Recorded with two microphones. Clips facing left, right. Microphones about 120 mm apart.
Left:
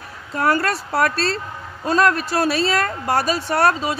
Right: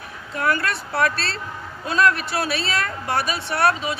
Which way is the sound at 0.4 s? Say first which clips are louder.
Left 4 dB; 40° left (ahead or behind).